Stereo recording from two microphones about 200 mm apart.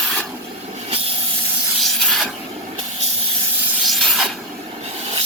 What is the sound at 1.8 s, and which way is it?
Spray, centre (ahead or behind).